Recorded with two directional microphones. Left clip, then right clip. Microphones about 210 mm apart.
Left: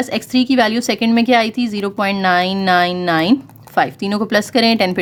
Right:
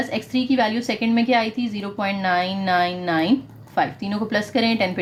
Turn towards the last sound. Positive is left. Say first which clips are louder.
# left 6 dB
turn(degrees=45)  # may be behind; listen again after turning